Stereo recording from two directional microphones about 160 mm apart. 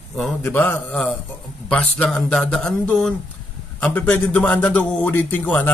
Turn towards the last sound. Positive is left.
turn(degrees=10)  # may be behind; listen again after turning